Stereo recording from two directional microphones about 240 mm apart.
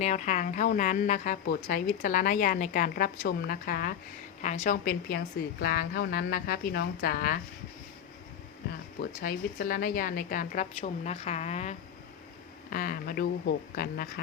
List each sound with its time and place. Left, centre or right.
0.0 s a woman's voice: left
9.2 s a woman's voice: left